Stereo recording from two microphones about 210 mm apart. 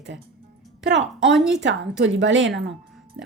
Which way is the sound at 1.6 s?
60° right (ahead or behind).